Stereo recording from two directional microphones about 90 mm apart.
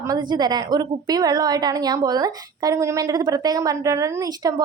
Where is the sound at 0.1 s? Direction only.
50° right (ahead or behind).